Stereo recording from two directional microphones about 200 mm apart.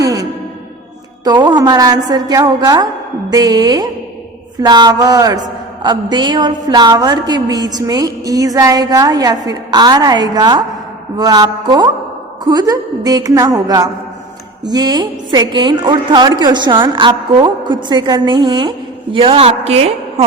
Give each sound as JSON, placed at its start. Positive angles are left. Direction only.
{"t": 0.0, "sound": "music", "side_deg": -15}
{"t": 1.2, "sound": "a man's voice", "side_deg": -20}